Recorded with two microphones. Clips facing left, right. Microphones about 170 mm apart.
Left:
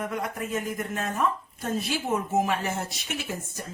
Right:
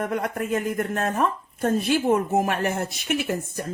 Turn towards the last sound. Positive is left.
turn(degrees=-60)  # may be behind; listen again after turning